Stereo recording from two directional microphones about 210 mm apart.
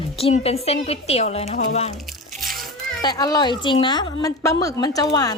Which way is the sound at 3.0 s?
20° left (ahead or behind).